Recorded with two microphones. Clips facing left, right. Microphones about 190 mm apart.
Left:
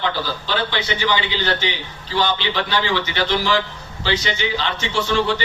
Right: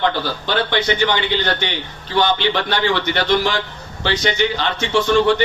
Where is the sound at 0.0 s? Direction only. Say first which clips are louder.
Right 4 dB; 55° right (ahead or behind).